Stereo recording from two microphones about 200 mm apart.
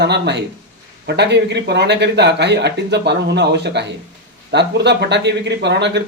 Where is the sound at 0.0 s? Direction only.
60° right (ahead or behind).